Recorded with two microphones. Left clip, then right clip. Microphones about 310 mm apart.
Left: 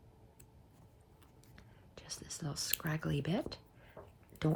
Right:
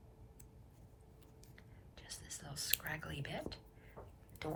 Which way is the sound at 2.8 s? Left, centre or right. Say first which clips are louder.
Left 5 dB; centre.